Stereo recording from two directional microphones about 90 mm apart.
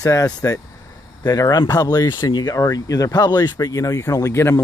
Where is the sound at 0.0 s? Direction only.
40° left (ahead or behind).